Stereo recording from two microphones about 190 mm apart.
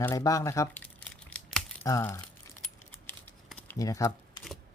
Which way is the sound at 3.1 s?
10° left (ahead or behind).